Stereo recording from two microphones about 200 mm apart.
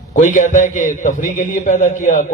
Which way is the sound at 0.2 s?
40° left (ahead or behind).